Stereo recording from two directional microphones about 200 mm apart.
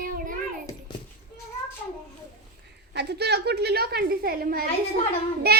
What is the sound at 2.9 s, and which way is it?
A woman's voice, 55° right (ahead or behind).